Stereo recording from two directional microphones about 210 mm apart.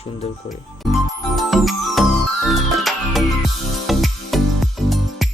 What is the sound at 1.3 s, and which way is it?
Music, centre (ahead or behind).